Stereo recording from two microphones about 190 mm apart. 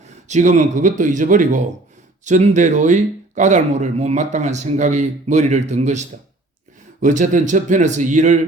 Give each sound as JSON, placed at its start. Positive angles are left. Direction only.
{"t": 0.0, "sound": "speech", "side_deg": -40}